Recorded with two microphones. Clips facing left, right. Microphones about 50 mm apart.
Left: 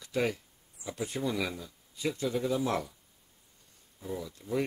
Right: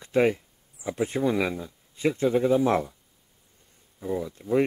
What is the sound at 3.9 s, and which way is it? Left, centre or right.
Speech, right.